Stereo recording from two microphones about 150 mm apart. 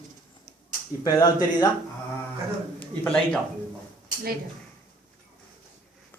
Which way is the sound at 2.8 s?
10° left (ahead or behind).